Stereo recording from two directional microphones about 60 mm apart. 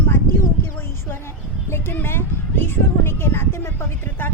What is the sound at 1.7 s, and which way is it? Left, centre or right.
Speech, left.